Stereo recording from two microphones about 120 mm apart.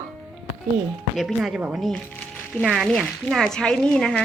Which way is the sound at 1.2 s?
Centre (ahead or behind).